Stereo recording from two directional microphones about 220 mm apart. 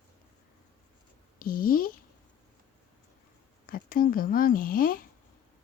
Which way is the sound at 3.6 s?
40° left (ahead or behind).